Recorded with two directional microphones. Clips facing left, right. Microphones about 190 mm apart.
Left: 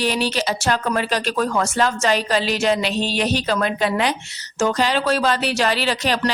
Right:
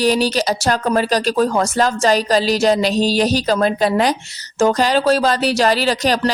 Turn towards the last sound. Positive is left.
turn(degrees=-40)  # may be behind; listen again after turning